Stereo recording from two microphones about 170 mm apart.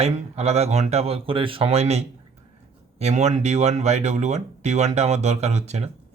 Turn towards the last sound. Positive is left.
turn(degrees=-40)  # may be behind; listen again after turning